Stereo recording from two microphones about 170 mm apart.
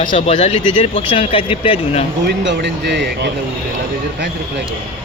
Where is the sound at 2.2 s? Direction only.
90° right.